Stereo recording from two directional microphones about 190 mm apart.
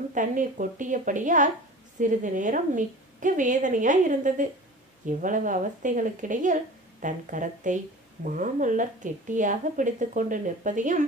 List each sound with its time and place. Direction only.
0.1 s speech: 45° right (ahead or behind)